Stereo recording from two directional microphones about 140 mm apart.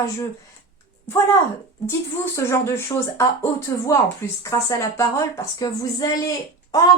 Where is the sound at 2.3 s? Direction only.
20° left (ahead or behind).